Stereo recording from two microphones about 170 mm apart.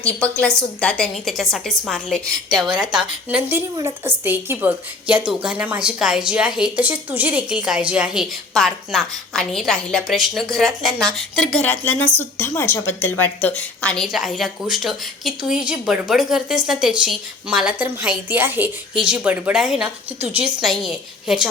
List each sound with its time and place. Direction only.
0.2 s a woman's voice: 5° left (ahead or behind)